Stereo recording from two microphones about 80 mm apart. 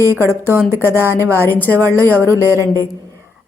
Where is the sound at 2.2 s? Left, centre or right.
Right.